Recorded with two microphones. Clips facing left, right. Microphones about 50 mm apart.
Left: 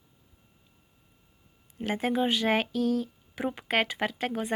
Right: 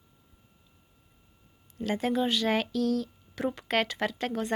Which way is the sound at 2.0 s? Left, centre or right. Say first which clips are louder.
Left 1 dB; centre.